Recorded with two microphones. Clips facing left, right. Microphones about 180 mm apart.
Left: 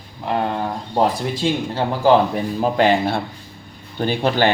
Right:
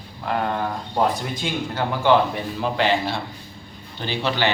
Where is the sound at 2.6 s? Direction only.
45° left (ahead or behind).